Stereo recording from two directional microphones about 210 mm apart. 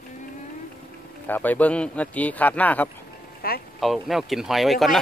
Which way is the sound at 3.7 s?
Centre (ahead or behind).